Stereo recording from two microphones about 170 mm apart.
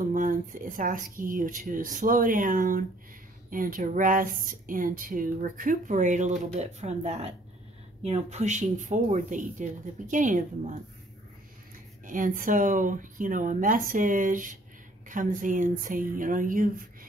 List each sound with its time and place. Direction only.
0.1 s speech: 50° right (ahead or behind)
12.1 s speech: 50° right (ahead or behind)